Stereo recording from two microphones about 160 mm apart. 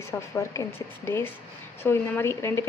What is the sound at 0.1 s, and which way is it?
Speech, 20° left (ahead or behind).